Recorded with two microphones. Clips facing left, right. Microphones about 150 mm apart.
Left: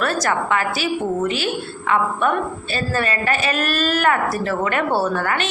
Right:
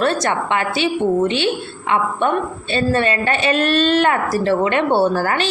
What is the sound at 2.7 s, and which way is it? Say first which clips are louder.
Speech: right 5 dB; 25° right (ahead or behind).